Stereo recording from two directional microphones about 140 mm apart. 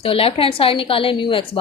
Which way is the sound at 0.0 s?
40° left (ahead or behind).